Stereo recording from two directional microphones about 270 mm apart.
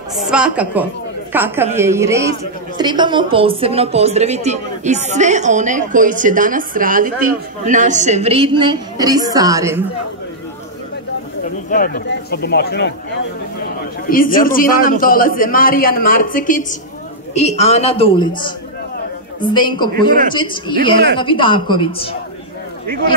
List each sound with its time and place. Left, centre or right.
0.1 s a woman's voice: centre
11.7 s a man's voice: left
14.0 s a man's voice: left